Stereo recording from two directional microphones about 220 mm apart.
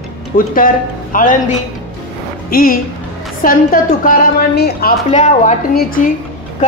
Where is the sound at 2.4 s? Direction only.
40° left (ahead or behind).